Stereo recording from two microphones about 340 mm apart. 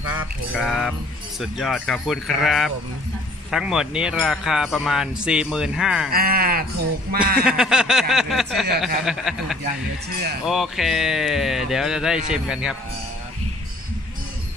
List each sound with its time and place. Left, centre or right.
0.1 s speech: centre
6.1 s speech: right
7.4 s speech: centre